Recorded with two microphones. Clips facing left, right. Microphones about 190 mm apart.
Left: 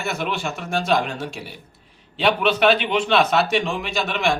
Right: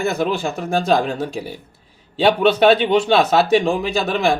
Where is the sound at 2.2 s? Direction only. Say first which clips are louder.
Right 5 dB; 35° right (ahead or behind).